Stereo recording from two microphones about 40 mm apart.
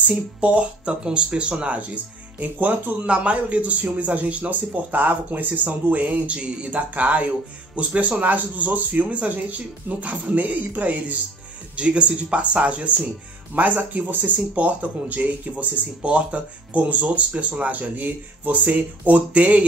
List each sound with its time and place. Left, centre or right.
0.1 s speech: right
3.1 s speech: right
6.9 s speech: right
8.2 s speech: right
11.7 s speech: right
18.7 s speech: right